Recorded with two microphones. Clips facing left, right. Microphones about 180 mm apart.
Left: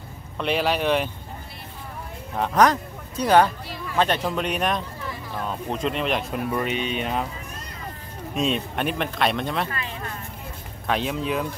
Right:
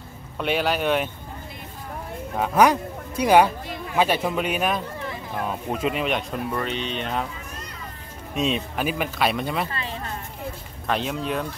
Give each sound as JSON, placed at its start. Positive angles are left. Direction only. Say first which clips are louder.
{"t": 0.4, "sound": "speech", "louder": "even", "side_deg": 0}
{"t": 2.3, "sound": "speech", "louder": "right 1 dB", "side_deg": -5}
{"t": 8.4, "sound": "speech", "louder": "even", "side_deg": 0}
{"t": 9.7, "sound": "speech", "louder": "right 1 dB", "side_deg": -30}
{"t": 10.9, "sound": "speech", "louder": "left 1 dB", "side_deg": 0}